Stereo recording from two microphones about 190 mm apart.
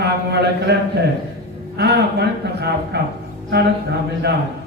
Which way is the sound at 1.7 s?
60° right (ahead or behind).